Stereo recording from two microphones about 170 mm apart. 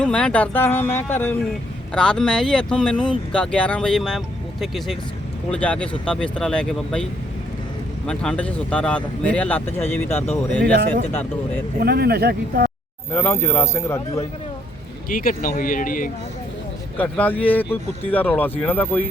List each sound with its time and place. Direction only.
0.0 s speech: 5° left (ahead or behind)
10.6 s speech: 70° right (ahead or behind)
11.1 s speech: 10° left (ahead or behind)
11.8 s speech: 65° right (ahead or behind)
13.1 s speech: 15° left (ahead or behind)
15.1 s speech: 55° left (ahead or behind)
17.0 s speech: 10° left (ahead or behind)